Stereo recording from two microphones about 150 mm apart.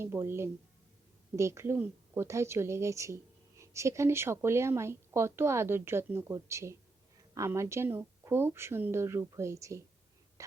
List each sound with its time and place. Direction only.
0.0 s a woman's voice: 15° right (ahead or behind)